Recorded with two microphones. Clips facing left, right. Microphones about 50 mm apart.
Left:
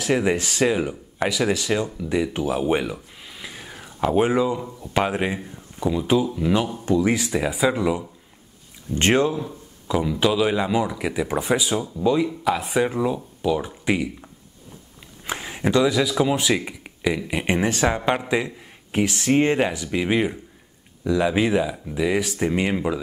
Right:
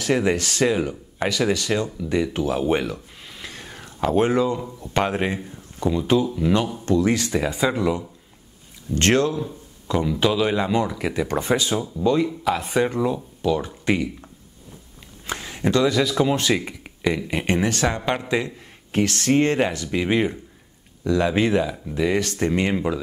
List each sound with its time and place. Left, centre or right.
0.0 s speech: centre
9.8 s speech: centre
15.2 s speech: centre
17.6 s speech: centre
19.9 s speech: centre